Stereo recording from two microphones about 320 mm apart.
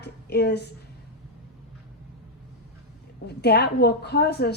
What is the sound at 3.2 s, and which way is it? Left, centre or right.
A woman's voice, left.